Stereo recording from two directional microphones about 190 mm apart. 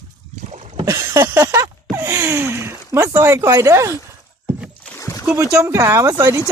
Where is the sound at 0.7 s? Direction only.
20° right (ahead or behind).